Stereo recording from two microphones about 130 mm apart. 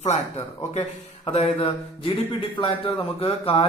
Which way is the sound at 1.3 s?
45° left (ahead or behind).